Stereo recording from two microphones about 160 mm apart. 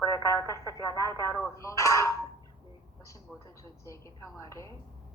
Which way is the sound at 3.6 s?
20° left (ahead or behind).